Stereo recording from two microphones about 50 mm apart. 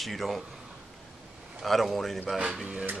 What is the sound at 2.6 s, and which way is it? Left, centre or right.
Speech, right.